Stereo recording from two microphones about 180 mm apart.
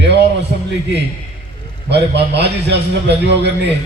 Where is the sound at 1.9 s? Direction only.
70° right (ahead or behind).